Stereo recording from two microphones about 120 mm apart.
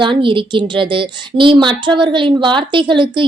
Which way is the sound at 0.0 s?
45° right (ahead or behind).